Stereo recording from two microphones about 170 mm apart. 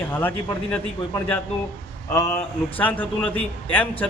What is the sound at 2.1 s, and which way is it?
A man's voice, 20° left (ahead or behind).